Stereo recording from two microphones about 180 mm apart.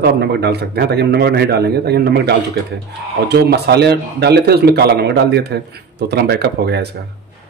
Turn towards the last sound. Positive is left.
turn(degrees=-65)  # may be behind; listen again after turning